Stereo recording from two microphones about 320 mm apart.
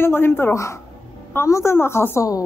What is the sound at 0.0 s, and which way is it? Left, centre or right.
A woman's voice, centre.